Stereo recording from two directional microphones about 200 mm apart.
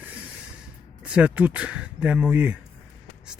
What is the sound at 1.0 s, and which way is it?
Speech, 5° right (ahead or behind).